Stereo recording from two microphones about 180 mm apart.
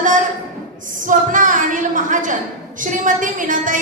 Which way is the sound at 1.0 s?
45° right (ahead or behind).